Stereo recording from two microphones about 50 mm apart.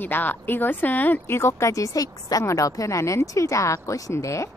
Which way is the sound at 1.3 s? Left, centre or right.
Left.